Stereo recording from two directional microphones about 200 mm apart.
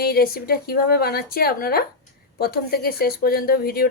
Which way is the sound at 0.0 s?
50° left (ahead or behind).